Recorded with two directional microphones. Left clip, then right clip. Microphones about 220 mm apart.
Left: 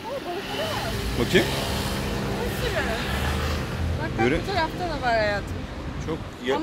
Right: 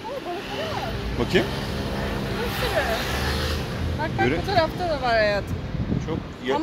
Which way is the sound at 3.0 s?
40° right (ahead or behind).